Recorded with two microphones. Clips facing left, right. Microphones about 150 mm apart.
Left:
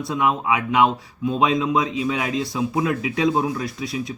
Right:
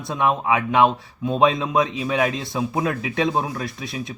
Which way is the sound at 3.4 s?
25° right (ahead or behind).